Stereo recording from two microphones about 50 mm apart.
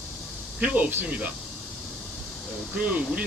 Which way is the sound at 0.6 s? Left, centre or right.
Right.